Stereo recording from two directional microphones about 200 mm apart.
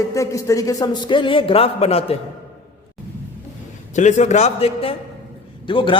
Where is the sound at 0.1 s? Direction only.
15° left (ahead or behind).